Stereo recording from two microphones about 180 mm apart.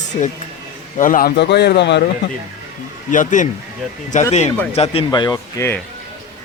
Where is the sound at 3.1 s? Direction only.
45° left (ahead or behind).